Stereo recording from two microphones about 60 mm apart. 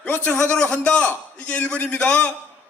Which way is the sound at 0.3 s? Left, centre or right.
Left.